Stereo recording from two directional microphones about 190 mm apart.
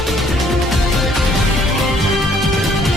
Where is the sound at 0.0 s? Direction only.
Centre (ahead or behind).